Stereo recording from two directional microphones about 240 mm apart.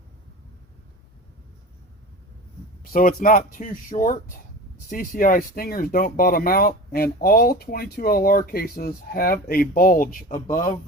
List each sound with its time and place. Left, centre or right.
2.8 s speech: left